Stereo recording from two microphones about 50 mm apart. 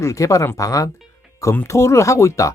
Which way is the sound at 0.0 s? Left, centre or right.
Left.